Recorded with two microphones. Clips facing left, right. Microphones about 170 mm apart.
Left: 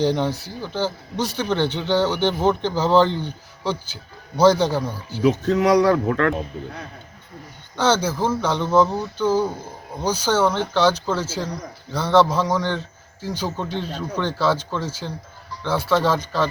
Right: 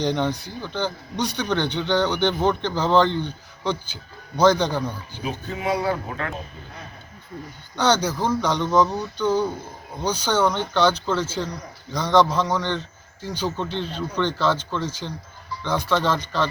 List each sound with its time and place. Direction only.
0.2 s a man's voice: 5° left (ahead or behind)
5.2 s speech: 80° left
7.8 s a man's voice: 5° left (ahead or behind)